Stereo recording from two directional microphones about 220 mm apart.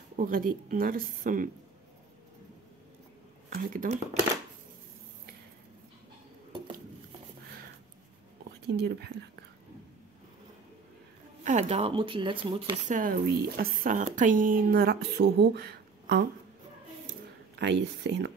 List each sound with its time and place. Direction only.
0.2 s speech: 40° right (ahead or behind)
3.4 s speech: 40° right (ahead or behind)
8.6 s speech: 50° right (ahead or behind)
11.4 s speech: 30° right (ahead or behind)
12.8 s speech: 35° right (ahead or behind)
17.6 s speech: 50° right (ahead or behind)